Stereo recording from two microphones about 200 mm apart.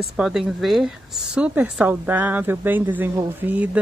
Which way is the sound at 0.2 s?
Centre (ahead or behind).